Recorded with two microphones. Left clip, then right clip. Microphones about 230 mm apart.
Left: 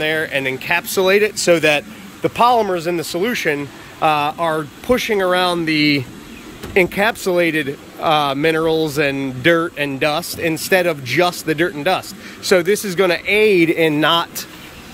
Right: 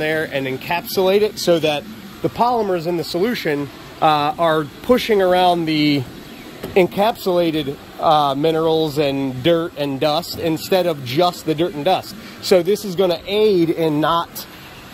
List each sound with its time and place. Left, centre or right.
0.0 s a man's voice: centre
8.1 s speech: left
8.6 s a man's voice: centre
14.0 s speech: left